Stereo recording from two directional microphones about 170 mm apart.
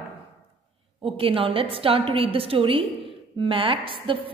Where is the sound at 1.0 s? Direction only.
30° right (ahead or behind).